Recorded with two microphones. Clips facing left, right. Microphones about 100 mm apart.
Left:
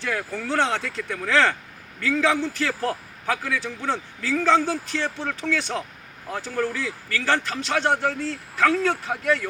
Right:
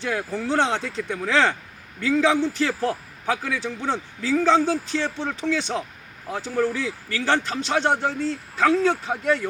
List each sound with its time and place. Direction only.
0.0 s a man's voice: 20° right (ahead or behind)